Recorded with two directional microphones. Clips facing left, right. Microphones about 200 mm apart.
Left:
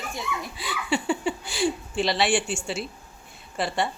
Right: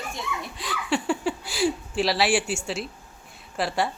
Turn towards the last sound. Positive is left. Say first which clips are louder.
# right 1 dB
turn(degrees=0)  # may be behind; listen again after turning